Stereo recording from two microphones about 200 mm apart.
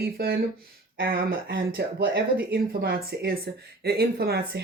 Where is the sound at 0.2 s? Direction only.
50° right (ahead or behind).